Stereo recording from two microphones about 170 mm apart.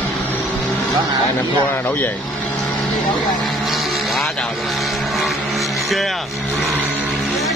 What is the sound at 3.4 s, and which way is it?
Vehicle, centre (ahead or behind).